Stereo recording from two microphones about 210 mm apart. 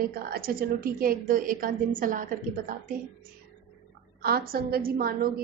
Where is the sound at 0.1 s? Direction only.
45° right (ahead or behind).